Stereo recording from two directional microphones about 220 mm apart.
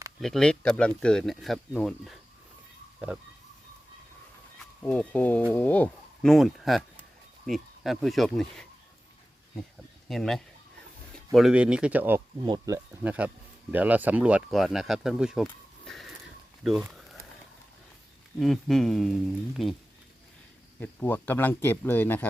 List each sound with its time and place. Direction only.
0.2 s speech: centre (ahead or behind)
4.8 s speech: 5° left (ahead or behind)
10.1 s speech: centre (ahead or behind)
16.6 s a sound: centre (ahead or behind)
18.3 s speech: centre (ahead or behind)
20.7 s speech: 10° left (ahead or behind)